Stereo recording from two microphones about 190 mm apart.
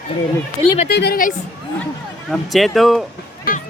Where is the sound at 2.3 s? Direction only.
Centre (ahead or behind).